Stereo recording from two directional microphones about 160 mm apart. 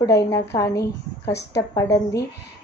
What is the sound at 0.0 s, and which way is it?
A woman's voice, 20° left (ahead or behind).